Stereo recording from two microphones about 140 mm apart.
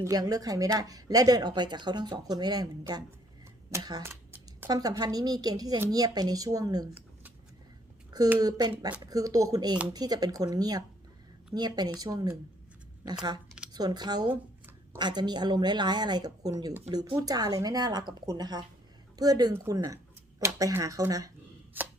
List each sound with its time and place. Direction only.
0.0 s speech: 25° right (ahead or behind)
4.0 s a sound: 15° right (ahead or behind)
4.7 s speech: 25° right (ahead or behind)
8.4 s speech: 30° right (ahead or behind)
13.7 s a woman's voice: 30° right (ahead or behind)